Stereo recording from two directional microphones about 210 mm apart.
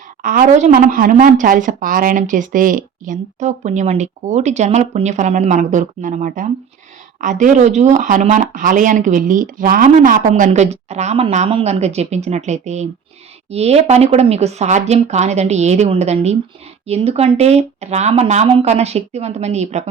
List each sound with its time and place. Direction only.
0.2 s speech: 40° right (ahead or behind)